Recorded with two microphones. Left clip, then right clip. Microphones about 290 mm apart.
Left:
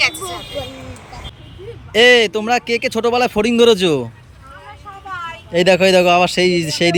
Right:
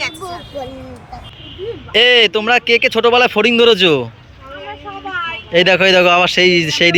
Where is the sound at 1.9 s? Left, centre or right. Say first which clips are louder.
Right 1 dB; centre.